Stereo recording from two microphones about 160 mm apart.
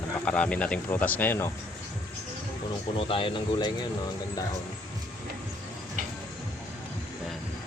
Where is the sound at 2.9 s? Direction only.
35° left (ahead or behind).